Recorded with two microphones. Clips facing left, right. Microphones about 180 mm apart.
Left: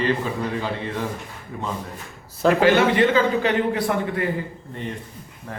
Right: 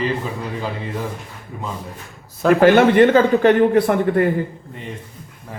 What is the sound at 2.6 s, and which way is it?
A man's voice, 55° right (ahead or behind).